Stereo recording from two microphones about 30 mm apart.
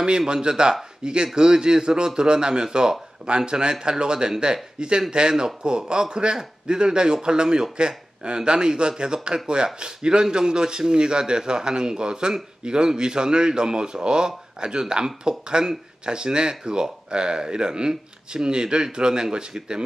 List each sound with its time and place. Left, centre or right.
0.3 s speech: right